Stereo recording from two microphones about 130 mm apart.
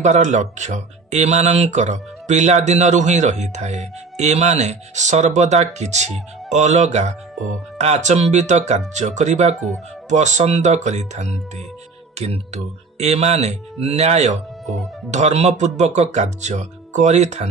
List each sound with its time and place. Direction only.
0.0 s speech: 65° right (ahead or behind)